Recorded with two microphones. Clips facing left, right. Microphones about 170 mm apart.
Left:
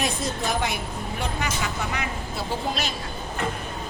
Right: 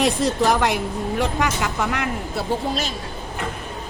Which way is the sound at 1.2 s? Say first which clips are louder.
Right 5 dB; 85° right.